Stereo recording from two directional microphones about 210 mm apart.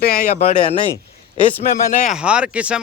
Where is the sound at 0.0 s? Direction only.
40° left (ahead or behind).